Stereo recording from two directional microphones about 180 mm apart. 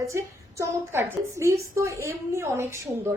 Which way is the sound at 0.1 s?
15° right (ahead or behind).